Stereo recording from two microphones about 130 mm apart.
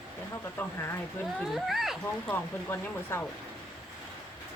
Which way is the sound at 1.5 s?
Centre (ahead or behind).